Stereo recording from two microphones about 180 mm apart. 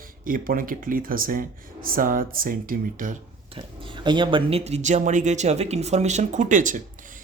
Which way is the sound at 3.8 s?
25° right (ahead or behind).